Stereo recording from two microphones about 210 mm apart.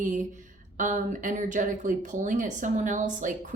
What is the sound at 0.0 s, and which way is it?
Speech, 35° right (ahead or behind).